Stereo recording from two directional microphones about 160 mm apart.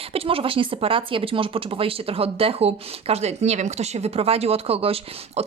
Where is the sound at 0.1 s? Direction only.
35° right (ahead or behind).